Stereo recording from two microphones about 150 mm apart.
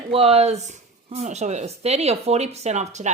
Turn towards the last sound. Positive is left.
turn(degrees=-50)  # may be behind; listen again after turning